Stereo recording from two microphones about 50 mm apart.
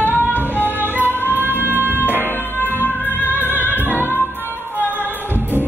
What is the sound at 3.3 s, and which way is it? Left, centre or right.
Music, right.